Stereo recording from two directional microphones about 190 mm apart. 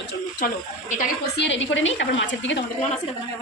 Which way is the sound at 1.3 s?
70° left (ahead or behind).